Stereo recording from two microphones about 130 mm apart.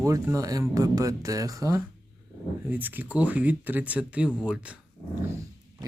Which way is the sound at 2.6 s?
15° right (ahead or behind).